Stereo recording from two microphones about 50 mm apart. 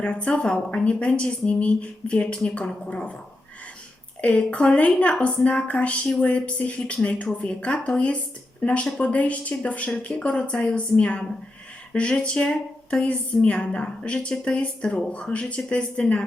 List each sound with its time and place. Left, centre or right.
0.0 s a woman's voice: left
4.2 s a woman's voice: left